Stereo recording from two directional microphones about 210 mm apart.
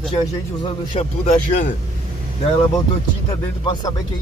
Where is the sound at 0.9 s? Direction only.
35° left (ahead or behind).